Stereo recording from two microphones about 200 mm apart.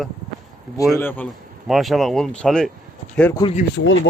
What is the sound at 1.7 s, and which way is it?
Speech, centre (ahead or behind).